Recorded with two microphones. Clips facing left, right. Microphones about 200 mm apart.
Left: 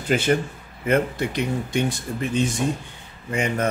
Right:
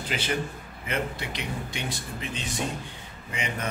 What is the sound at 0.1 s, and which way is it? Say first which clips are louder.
Speech: left 10 dB; 50° left (ahead or behind).